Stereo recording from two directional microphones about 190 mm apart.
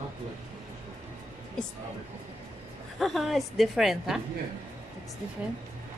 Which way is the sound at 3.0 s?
Centre (ahead or behind).